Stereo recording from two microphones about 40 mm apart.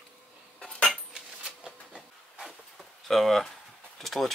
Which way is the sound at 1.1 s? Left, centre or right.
Right.